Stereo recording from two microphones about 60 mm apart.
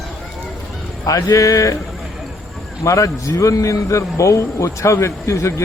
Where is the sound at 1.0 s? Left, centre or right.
Left.